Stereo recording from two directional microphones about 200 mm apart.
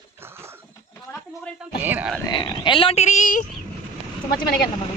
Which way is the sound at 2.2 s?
20° left (ahead or behind).